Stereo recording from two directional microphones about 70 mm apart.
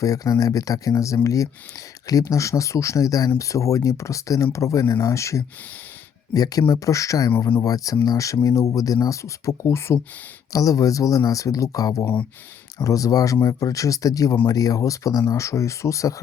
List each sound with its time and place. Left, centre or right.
0.0 s speech: left
6.3 s speech: left
10.5 s speech: left